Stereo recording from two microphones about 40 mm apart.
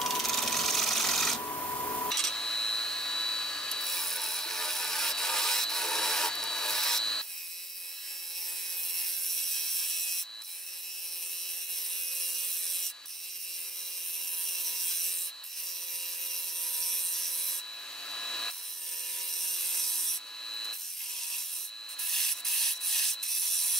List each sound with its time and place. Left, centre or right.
0.0 s rub: centre
2.0 s tools: centre
8.9 s wood: centre
12.2 s wood: centre
14.4 s wood: centre
16.8 s wood: centre
18.1 s wood: left
19.3 s wood: centre
20.4 s rub: centre
22.0 s rub: centre